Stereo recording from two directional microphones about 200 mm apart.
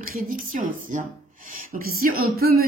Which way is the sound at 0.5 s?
40° right (ahead or behind).